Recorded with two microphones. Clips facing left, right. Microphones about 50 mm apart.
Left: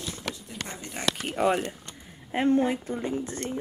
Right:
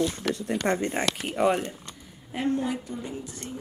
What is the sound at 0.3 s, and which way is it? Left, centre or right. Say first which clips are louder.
Speech: right 9 dB; right.